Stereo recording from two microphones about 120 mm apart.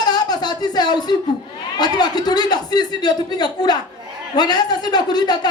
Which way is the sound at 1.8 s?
35° left (ahead or behind).